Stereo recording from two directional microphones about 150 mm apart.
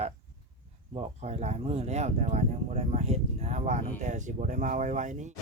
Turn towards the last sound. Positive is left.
turn(degrees=-55)  # may be behind; listen again after turning